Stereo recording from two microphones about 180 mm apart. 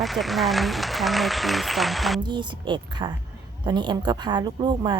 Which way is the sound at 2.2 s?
25° right (ahead or behind).